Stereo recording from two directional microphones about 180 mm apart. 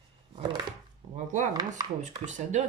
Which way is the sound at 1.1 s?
40° right (ahead or behind).